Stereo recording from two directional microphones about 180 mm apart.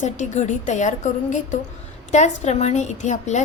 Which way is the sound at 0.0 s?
40° left (ahead or behind).